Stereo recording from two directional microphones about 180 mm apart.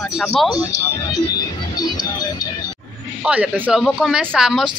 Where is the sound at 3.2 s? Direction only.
5° right (ahead or behind).